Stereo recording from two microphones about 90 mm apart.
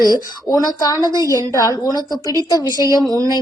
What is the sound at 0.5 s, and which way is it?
A woman's voice, 40° left (ahead or behind).